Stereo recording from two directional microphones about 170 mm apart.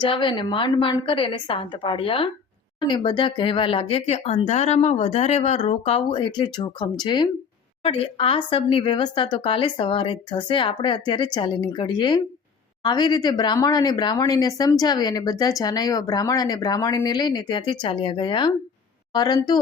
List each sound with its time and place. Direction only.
0.0 s speech: 30° left (ahead or behind)